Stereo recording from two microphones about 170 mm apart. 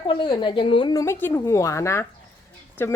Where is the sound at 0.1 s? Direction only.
25° left (ahead or behind).